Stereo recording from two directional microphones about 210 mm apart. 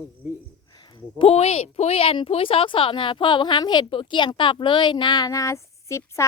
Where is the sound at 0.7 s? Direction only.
20° left (ahead or behind).